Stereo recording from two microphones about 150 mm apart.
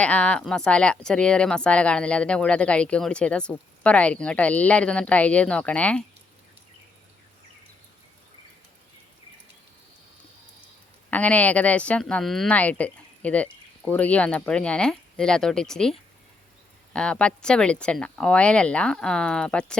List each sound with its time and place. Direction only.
0.0 s speech: 10° left (ahead or behind)
11.1 s speech: 10° left (ahead or behind)